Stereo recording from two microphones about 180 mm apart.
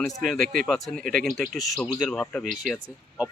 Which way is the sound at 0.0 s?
Centre (ahead or behind).